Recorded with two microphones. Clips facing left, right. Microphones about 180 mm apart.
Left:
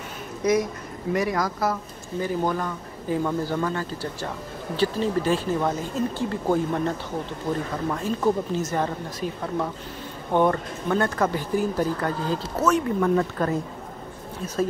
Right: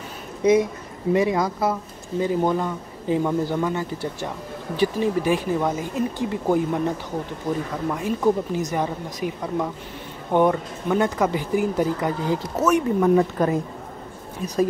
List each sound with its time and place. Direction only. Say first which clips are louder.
0.4 s speech: right 4 dB; 25° right (ahead or behind)